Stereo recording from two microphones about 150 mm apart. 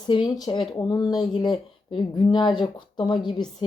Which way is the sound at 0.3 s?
30° left (ahead or behind).